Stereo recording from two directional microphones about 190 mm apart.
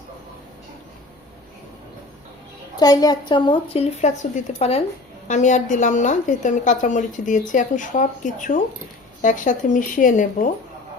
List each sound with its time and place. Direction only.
2.7 s a woman's voice: 20° left (ahead or behind); by 10.5 s 45° left (ahead or behind)